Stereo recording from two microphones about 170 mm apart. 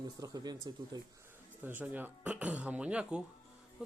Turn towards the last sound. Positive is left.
turn(degrees=-5)  # may be behind; listen again after turning